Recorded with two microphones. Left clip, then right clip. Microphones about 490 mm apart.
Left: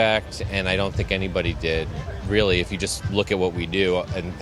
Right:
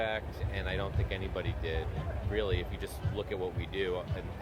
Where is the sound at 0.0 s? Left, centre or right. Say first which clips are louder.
Left 14 dB; left.